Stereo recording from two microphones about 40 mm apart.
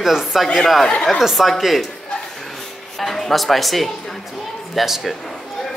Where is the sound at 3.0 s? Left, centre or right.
Centre.